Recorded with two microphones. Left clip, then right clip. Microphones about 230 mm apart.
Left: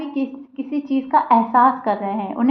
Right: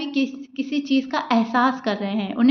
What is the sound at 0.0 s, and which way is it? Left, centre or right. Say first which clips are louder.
A woman's voice: right 1 dB; right.